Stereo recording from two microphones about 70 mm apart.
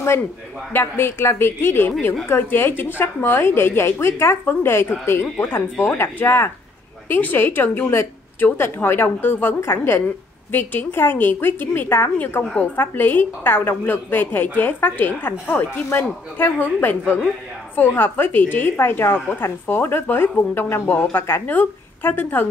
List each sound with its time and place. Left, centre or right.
0.7 s a woman's voice: left
1.9 s a woman's voice: left
2.2 s a woman's voice: left